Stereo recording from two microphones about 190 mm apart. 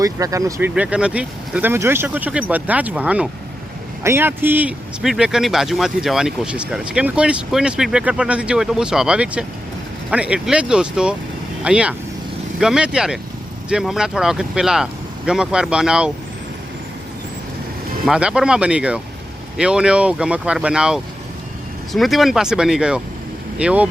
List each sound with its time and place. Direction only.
0.0 s speech: 15° right (ahead or behind)
0.7 s a man's voice: 5° right (ahead or behind)
18.0 s a man's voice: 5° right (ahead or behind)